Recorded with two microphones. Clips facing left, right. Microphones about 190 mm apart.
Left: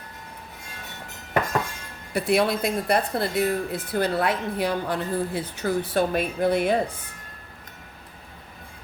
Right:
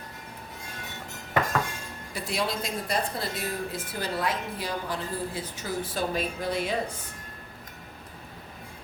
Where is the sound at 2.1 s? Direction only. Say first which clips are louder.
Left 9 dB; 60° left (ahead or behind).